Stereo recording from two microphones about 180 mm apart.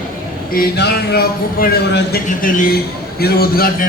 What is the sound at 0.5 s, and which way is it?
A man's voice, 60° left (ahead or behind).